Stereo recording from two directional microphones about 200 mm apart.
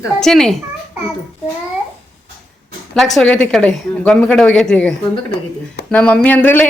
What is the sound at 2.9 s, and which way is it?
Speech, centre (ahead or behind).